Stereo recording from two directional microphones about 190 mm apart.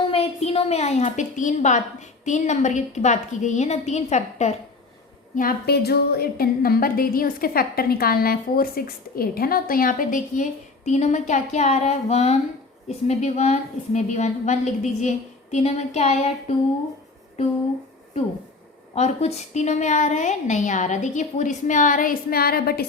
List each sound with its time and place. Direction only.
0.1 s a woman's voice: 30° left (ahead or behind)
5.4 s a woman's voice: 50° left (ahead or behind); by 16.3 s 35° left (ahead or behind)
18.9 s a woman's voice: 35° left (ahead or behind); by 22.9 s 55° left (ahead or behind)